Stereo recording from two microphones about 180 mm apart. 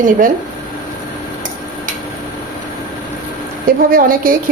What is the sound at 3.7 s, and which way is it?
Speech, 50° right (ahead or behind).